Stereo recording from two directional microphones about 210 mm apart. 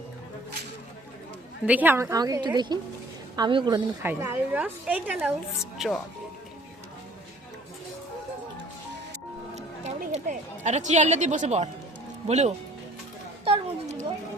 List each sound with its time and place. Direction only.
1.6 s a woman's voice: 10° right (ahead or behind)
4.0 s a woman's voice: 10° right (ahead or behind)
9.6 s a sound: 35° right (ahead or behind)
12.3 s speech: 30° right (ahead or behind)
13.4 s chatter: 30° right (ahead or behind)